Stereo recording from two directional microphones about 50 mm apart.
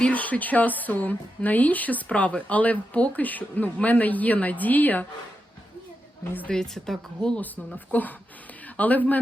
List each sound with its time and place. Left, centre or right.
0.0 s speech: left
2.0 s speech: left
6.5 s a woman's voice: centre
7.9 s speech: left